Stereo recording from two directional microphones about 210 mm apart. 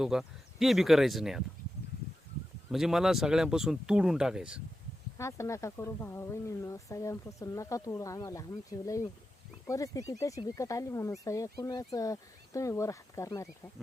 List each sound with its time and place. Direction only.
0.0 s speech: centre (ahead or behind)
2.7 s speech: centre (ahead or behind)
5.1 s speech: 15° left (ahead or behind)